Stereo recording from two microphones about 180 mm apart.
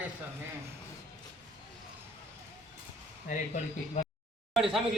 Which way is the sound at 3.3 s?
40° left (ahead or behind).